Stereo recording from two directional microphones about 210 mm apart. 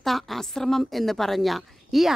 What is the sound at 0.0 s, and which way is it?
A woman's voice, centre (ahead or behind).